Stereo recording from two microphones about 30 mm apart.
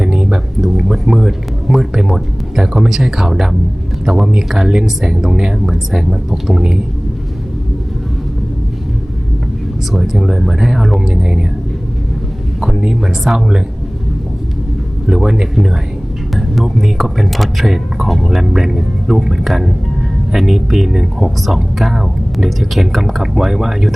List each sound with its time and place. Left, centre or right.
0.0 s a sound: right
1.1 s speech: centre
10.0 s speech: centre
11.1 s speech: right
12.8 s speech: right
15.0 s speech: centre
16.3 s speech: centre